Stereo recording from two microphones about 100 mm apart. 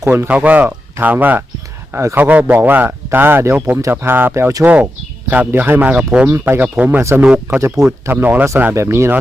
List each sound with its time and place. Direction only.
0.0 s speech: 20° right (ahead or behind)